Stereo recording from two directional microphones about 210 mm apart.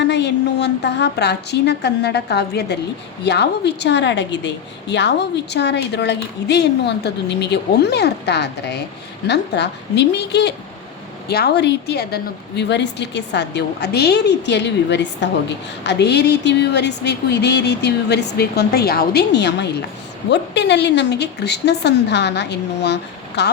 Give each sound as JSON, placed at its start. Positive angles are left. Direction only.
{"t": 0.0, "sound": "a woman's voice", "side_deg": 55}